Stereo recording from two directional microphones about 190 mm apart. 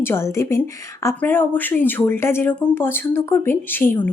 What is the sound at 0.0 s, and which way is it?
Speech, 15° left (ahead or behind).